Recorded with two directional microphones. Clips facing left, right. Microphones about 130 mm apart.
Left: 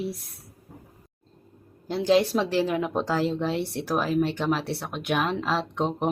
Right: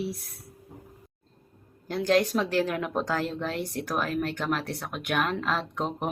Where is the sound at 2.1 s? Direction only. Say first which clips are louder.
Left 3 dB; centre (ahead or behind).